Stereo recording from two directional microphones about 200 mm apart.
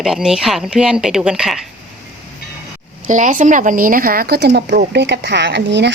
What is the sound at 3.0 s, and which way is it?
Speech, 40° right (ahead or behind).